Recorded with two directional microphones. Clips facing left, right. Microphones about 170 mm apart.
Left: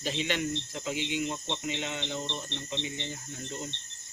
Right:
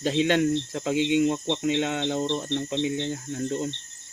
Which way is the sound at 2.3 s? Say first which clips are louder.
Right 10 dB; 85° right.